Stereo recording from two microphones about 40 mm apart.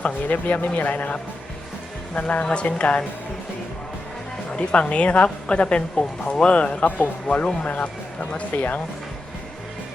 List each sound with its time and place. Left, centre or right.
0.3 s speech: left
2.2 s a woman's voice: left
4.5 s a woman's voice: left